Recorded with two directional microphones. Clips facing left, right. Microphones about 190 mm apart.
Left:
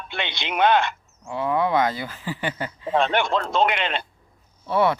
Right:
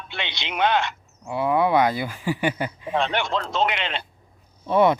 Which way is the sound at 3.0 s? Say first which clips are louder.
Left 3 dB; 50° left (ahead or behind).